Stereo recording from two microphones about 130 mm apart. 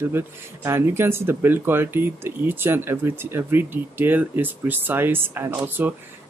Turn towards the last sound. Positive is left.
turn(degrees=-20)  # may be behind; listen again after turning